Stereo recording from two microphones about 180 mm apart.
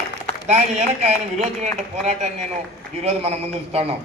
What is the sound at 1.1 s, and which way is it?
Speech, 40° right (ahead or behind).